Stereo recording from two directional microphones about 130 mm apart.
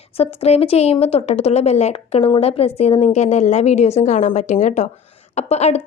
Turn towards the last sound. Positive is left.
turn(degrees=55)  # may be behind; listen again after turning